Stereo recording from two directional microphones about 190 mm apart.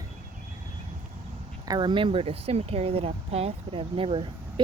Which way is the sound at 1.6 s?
25° right (ahead or behind).